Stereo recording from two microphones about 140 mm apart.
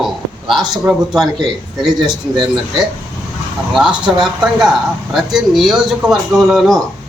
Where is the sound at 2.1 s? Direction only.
35° right (ahead or behind).